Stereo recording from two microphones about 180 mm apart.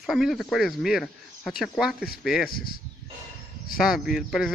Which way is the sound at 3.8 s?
5° right (ahead or behind).